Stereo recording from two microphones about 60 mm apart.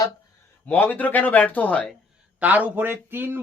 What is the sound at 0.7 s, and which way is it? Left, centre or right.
Speech, left.